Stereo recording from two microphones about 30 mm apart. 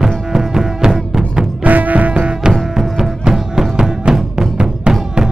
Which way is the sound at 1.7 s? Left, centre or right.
Right.